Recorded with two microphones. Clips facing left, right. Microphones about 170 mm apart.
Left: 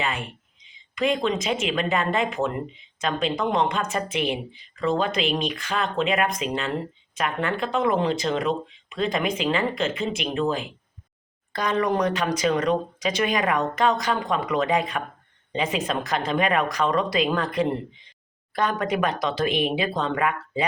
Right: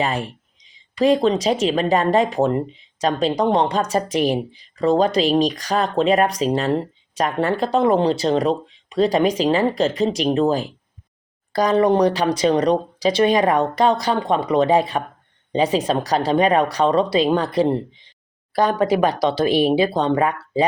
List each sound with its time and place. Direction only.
0.0 s speech: 40° right (ahead or behind)